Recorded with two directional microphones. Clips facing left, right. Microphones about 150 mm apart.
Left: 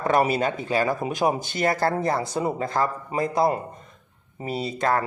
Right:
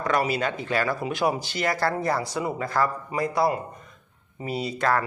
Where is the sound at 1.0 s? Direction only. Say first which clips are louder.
Left 2 dB; 40° left (ahead or behind).